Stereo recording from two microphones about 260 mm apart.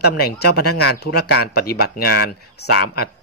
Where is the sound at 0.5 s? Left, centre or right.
Left.